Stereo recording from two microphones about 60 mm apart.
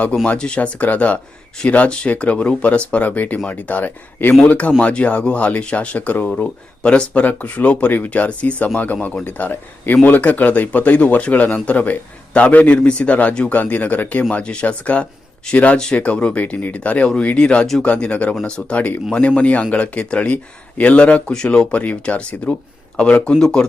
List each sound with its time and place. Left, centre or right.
0.3 s speech: centre
6.3 s speech: centre